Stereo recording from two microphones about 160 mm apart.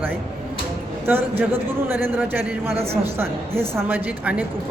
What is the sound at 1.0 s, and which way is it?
A woman's voice, 10° right (ahead or behind).